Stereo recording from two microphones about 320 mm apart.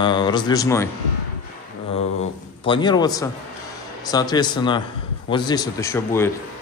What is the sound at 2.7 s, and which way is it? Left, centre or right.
Speech, centre.